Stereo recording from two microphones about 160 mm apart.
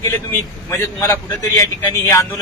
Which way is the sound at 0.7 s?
15° left (ahead or behind).